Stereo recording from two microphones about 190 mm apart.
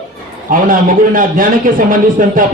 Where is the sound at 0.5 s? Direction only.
45° right (ahead or behind).